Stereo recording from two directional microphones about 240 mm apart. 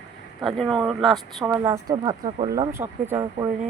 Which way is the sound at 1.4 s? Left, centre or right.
Centre.